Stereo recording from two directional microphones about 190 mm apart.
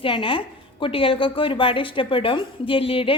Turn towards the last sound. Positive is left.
turn(degrees=30)  # may be behind; listen again after turning